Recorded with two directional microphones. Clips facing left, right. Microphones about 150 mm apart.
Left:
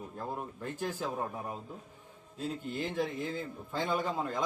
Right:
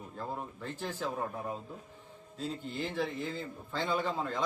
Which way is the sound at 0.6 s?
10° left (ahead or behind).